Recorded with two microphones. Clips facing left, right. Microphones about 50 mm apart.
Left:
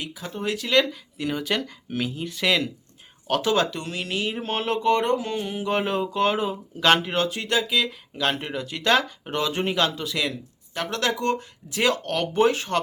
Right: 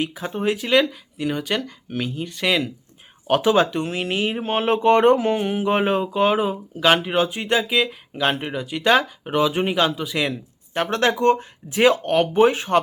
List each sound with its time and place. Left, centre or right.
0.0 s speech: right; by 2.6 s centre
3.2 s speech: right
10.8 s speech: right